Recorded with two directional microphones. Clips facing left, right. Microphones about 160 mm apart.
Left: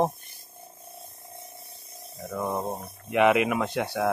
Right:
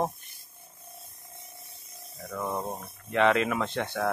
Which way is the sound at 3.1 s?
15° left (ahead or behind).